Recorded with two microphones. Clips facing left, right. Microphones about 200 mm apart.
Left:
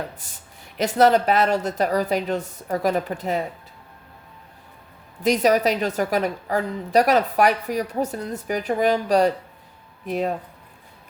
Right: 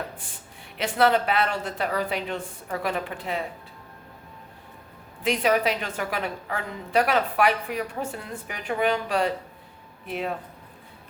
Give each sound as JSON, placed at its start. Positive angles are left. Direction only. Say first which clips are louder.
{"t": 0.8, "sound": "a woman's voice", "louder": "left 4 dB", "side_deg": 40}
{"t": 5.2, "sound": "a woman's voice", "louder": "left 4 dB", "side_deg": 40}